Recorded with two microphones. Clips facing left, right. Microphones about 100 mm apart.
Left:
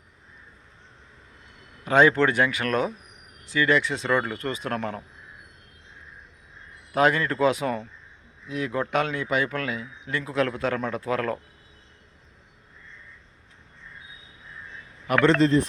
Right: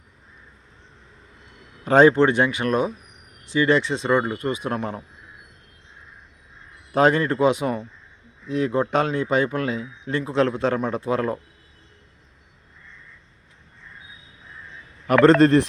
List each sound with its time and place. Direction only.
1.8 s a man's voice: 35° right (ahead or behind)
2.1 s a man's voice: 25° right (ahead or behind)
6.9 s a man's voice: 30° right (ahead or behind)
8.4 s a man's voice: 30° right (ahead or behind)
15.2 s a man's voice: 40° right (ahead or behind)